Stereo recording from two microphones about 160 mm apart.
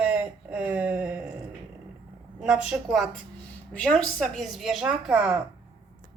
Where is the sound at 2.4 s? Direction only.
5° right (ahead or behind).